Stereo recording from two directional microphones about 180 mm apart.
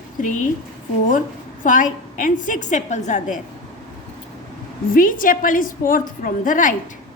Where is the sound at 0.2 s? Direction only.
45° left (ahead or behind).